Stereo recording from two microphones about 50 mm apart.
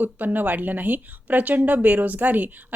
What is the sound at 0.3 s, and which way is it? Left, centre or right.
A woman's voice, right.